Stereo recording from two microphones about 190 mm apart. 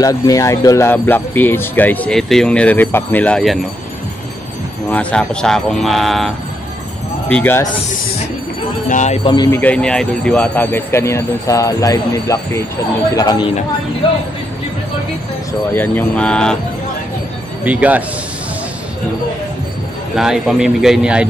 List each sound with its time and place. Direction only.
0.0 s speech: 20° left (ahead or behind)
4.9 s speech: 5° left (ahead or behind)
8.8 s speech: 40° left (ahead or behind)
9.5 s speech: 10° left (ahead or behind)
15.7 s speech: 10° left (ahead or behind)
17.6 s speech: 10° right (ahead or behind)
20.2 s speech: 5° right (ahead or behind)